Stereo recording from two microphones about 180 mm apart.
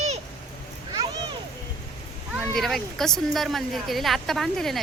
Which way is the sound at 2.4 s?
Centre (ahead or behind).